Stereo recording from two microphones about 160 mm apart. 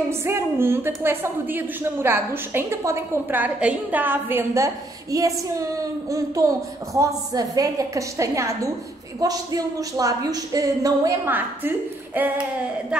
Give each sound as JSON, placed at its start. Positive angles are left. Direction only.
{"t": 0.1, "sound": "a woman's voice", "side_deg": -15}